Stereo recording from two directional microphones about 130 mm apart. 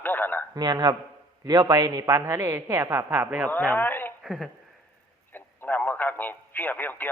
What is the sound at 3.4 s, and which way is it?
Speech, 15° left (ahead or behind).